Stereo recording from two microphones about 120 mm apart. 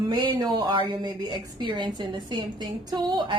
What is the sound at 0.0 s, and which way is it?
A woman's voice, 35° right (ahead or behind).